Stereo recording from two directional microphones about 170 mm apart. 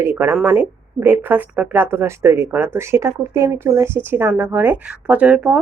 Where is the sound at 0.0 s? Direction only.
15° right (ahead or behind).